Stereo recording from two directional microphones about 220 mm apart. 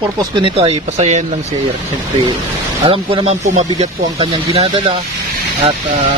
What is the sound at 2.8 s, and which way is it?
Speech, 25° right (ahead or behind).